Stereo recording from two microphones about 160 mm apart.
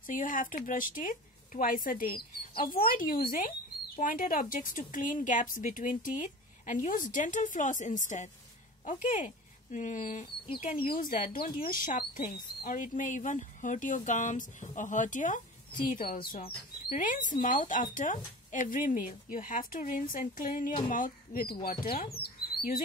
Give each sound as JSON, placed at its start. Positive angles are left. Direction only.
{"t": 0.0, "sound": "speech", "side_deg": 55}
{"t": 22.1, "sound": "bird", "side_deg": 75}